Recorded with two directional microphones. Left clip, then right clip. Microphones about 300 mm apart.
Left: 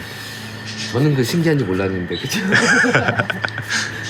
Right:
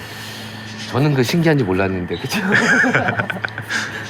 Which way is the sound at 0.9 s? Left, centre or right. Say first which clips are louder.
Right 1 dB; centre.